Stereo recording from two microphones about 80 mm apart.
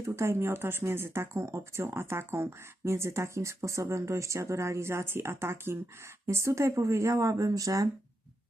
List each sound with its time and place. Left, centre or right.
0.0 s speech: right